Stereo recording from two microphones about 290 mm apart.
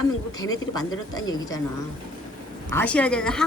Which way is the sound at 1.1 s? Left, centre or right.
Centre.